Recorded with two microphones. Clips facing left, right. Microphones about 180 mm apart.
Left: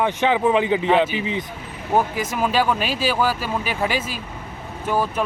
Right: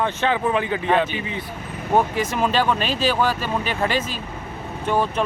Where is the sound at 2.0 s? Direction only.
5° left (ahead or behind).